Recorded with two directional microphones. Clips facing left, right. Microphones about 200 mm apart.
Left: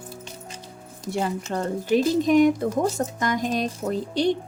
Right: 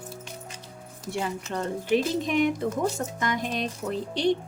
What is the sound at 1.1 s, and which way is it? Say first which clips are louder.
Speech: left 4 dB; 40° left (ahead or behind).